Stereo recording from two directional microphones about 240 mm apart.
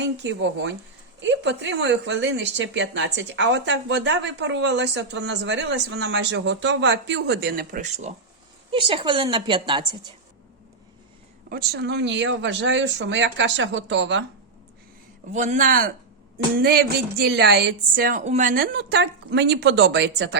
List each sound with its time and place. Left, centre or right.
0.0 s a woman's voice: right
8.7 s a woman's voice: right
11.4 s a woman's voice: right
15.3 s a woman's voice: right